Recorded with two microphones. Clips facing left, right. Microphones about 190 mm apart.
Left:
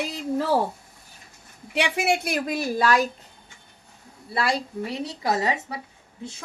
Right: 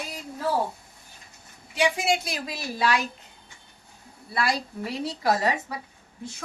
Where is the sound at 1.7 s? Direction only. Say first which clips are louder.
Left 1 dB; 65° left (ahead or behind); by 3.1 s 45° left (ahead or behind).